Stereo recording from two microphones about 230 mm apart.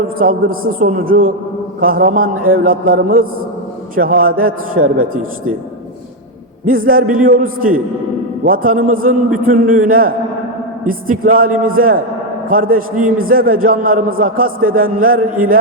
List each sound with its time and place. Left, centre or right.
0.2 s a man's voice: right
6.7 s a man's voice: right